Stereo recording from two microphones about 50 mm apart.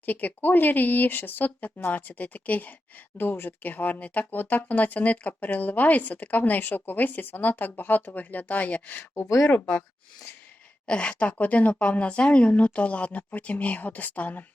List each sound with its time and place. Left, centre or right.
0.0 s speech: left
10.8 s speech: left